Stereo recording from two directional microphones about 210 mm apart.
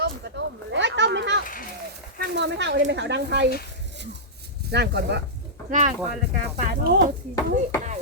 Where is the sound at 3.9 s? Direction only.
55° right (ahead or behind).